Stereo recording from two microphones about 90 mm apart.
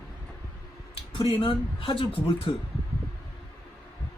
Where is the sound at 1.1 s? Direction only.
85° left.